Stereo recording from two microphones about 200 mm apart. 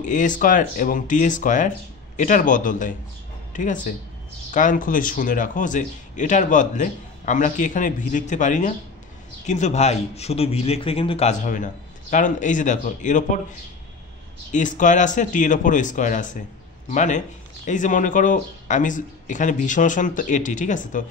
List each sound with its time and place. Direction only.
0.0 s a man's voice: 40° left (ahead or behind)
14.5 s a man's voice: 40° left (ahead or behind)